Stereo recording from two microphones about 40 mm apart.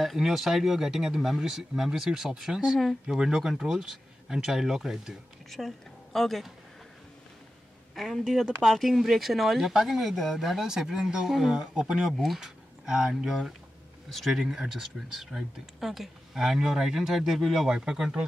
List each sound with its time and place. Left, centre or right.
0.0 s speech: centre
6.1 s speech: centre
7.9 s speech: centre
11.6 s speech: right